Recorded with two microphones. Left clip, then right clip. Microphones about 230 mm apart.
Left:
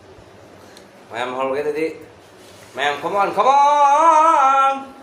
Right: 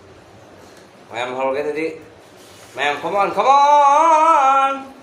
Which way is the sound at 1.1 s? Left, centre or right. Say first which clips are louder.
Right 1 dB; centre.